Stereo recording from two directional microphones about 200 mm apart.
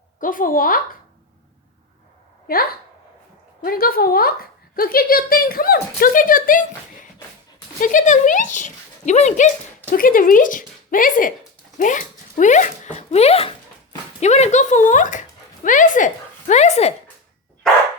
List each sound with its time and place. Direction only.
0.2 s speech: 40° left (ahead or behind)
2.5 s speech: 45° left (ahead or behind)
7.8 s speech: 40° left (ahead or behind)
17.6 s dog: 5° left (ahead or behind)